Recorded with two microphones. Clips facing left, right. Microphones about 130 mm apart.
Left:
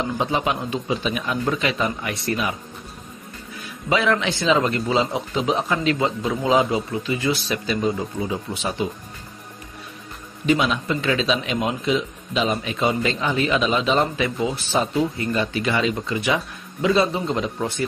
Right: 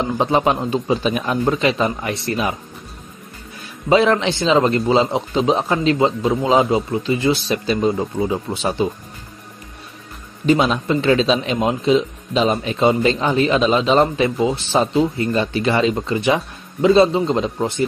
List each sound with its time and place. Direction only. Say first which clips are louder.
0.2 s a man's voice: right 8 dB; 40° right (ahead or behind)
1.5 s speech: right 5 dB; 30° right (ahead or behind)
3.9 s a man's voice: right 6 dB; 30° right (ahead or behind)
10.4 s a man's voice: right 4 dB; 35° right (ahead or behind)